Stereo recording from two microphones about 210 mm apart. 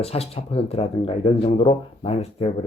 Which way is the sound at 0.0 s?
30° left (ahead or behind).